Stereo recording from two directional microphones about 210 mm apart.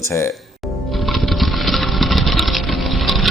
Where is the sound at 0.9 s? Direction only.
Centre (ahead or behind).